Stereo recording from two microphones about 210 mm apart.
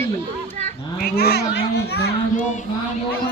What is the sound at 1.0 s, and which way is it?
Speech, 50° left (ahead or behind).